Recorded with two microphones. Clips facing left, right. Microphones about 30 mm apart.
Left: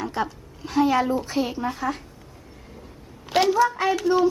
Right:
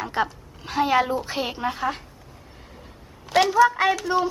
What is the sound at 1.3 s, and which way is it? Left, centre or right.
Speech, right.